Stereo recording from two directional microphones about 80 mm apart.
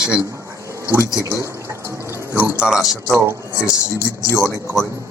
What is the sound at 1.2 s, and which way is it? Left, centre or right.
Speech, right.